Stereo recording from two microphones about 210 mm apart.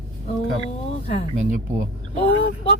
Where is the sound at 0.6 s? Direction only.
30° left (ahead or behind).